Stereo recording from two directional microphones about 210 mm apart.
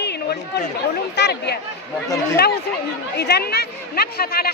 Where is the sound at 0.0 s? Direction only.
50° left (ahead or behind).